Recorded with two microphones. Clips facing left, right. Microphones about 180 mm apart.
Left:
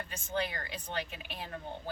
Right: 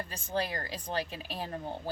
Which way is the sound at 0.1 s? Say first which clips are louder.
Right 1 dB; 35° right (ahead or behind).